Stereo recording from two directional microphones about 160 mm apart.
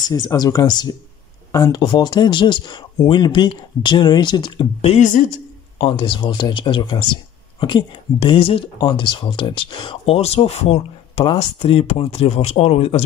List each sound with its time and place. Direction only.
0.1 s speech: 25° left (ahead or behind)
4.9 s speech: 55° left (ahead or behind)
5.8 s speech: 35° left (ahead or behind)